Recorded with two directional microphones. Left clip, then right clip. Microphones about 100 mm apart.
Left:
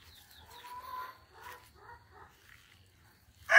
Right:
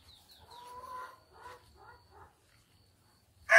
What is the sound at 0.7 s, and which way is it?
Chicken, centre (ahead or behind).